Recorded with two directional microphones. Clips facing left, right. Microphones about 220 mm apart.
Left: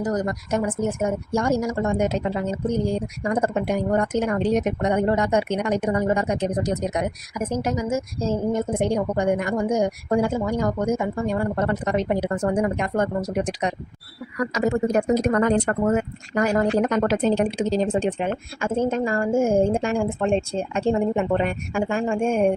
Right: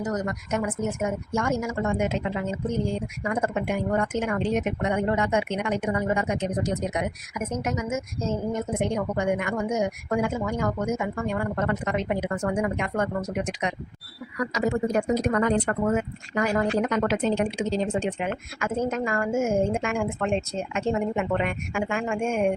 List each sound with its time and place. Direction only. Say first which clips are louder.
0.0 s a woman's voice: left 4 dB; 35° left (ahead or behind)
14.5 s a woman's voice: left 3 dB; 45° left (ahead or behind)